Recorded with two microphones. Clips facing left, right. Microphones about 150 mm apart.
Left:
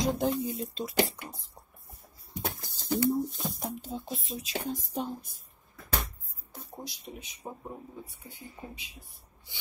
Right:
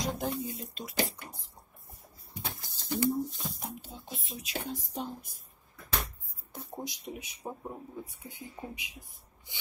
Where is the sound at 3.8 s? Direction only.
40° left (ahead or behind).